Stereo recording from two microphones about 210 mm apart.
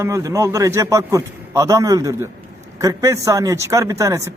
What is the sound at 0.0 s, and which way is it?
A man's voice, 15° right (ahead or behind).